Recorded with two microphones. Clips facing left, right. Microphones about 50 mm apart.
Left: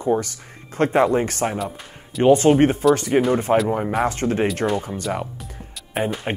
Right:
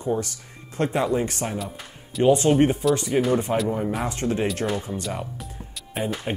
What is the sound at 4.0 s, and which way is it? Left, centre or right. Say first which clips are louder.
Speech: left 5 dB; left.